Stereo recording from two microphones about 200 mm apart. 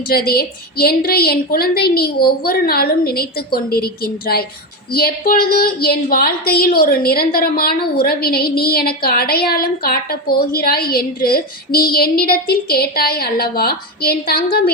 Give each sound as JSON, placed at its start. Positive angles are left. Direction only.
{"t": 0.0, "sound": "a woman's voice", "side_deg": 50}